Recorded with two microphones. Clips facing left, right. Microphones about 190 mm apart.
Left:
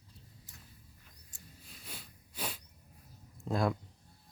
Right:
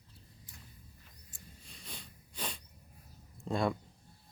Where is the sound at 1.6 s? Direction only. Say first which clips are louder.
Even; 5° left (ahead or behind).